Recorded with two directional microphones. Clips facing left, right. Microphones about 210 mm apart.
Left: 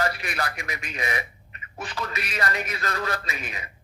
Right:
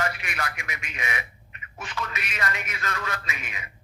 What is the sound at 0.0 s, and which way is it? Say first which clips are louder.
A man's voice: left 3 dB; 35° left (ahead or behind).